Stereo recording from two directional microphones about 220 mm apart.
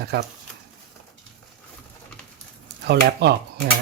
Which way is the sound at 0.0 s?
50° right (ahead or behind).